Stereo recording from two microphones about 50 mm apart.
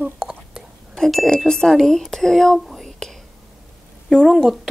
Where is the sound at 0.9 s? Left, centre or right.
Centre.